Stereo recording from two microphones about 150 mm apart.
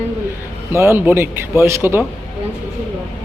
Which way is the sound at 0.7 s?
15° right (ahead or behind).